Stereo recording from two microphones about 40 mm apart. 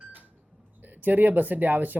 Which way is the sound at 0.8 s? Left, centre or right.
Right.